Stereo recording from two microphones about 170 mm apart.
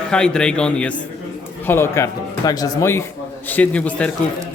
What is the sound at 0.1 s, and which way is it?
Speech, 5° left (ahead or behind).